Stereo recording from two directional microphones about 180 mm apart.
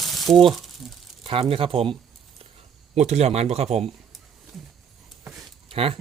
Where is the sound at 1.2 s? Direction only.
30° right (ahead or behind).